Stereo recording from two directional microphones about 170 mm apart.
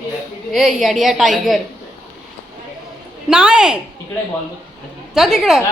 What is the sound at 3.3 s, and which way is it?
Speech, 5° right (ahead or behind).